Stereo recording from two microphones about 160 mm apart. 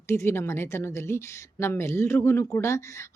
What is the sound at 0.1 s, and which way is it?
A woman's voice, 15° left (ahead or behind).